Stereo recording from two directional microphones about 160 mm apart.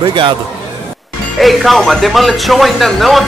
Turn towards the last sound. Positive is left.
turn(degrees=0)  # may be behind; listen again after turning